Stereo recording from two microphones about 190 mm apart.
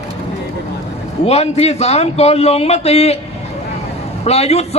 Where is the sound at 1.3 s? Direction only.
35° left (ahead or behind).